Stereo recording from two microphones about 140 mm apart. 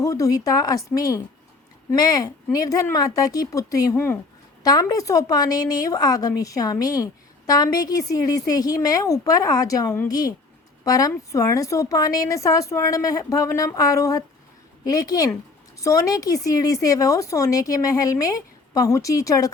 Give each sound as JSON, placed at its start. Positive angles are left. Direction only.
{"t": 0.0, "sound": "a woman's voice", "side_deg": 25}
{"t": 4.6, "sound": "a woman's voice", "side_deg": 30}